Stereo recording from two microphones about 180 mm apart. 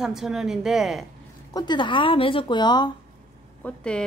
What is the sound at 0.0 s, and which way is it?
Speech, centre (ahead or behind).